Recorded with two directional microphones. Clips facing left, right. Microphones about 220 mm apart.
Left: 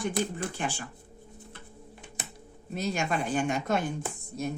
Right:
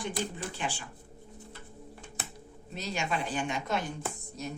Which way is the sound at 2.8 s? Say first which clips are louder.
Left 4 dB; 50° left (ahead or behind).